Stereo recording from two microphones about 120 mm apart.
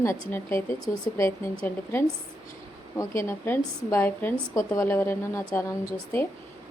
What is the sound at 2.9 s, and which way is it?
A woman's voice, 25° left (ahead or behind).